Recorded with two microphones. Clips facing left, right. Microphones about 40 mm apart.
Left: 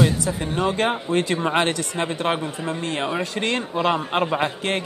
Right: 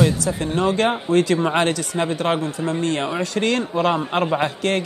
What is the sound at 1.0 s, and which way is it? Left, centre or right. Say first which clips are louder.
Speech: right 4 dB; left.